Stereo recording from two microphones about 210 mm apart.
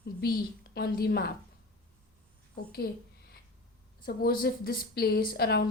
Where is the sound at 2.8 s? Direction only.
45° left (ahead or behind).